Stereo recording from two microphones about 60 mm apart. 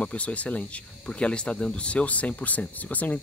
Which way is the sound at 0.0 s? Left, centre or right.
Left.